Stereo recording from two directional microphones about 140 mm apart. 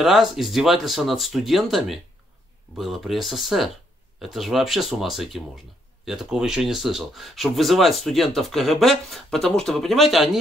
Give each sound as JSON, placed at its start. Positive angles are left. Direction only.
{"t": 0.0, "sound": "speech", "side_deg": 0}